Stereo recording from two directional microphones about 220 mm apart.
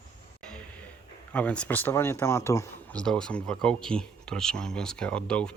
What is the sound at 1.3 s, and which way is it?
Speech, 5° left (ahead or behind).